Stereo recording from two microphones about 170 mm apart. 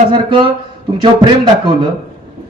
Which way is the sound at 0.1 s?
30° right (ahead or behind).